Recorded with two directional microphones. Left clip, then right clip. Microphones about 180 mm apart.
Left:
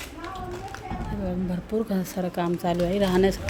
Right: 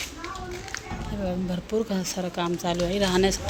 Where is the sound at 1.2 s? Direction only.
10° left (ahead or behind).